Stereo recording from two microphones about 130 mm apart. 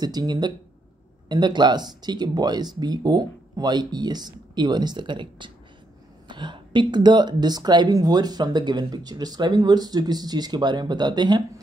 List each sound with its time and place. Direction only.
0.0 s speech: 30° right (ahead or behind)